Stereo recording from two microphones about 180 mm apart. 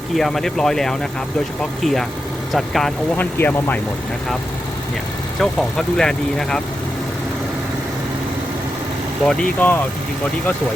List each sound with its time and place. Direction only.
0.1 s speech: centre (ahead or behind)
5.4 s speech: centre (ahead or behind)
9.2 s speech: 5° left (ahead or behind)